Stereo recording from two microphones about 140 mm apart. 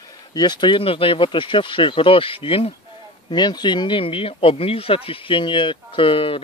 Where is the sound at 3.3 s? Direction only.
30° left (ahead or behind).